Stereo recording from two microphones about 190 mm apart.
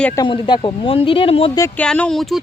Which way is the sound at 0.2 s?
25° left (ahead or behind).